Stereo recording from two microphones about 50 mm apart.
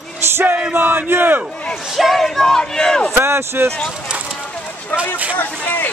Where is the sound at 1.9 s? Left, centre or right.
Centre.